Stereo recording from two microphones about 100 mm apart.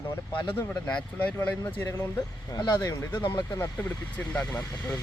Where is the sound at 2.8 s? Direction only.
25° left (ahead or behind).